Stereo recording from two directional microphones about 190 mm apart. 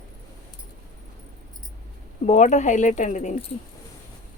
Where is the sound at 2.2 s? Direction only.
35° left (ahead or behind).